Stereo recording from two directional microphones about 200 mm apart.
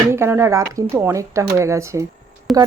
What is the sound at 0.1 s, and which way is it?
Speech, 15° right (ahead or behind).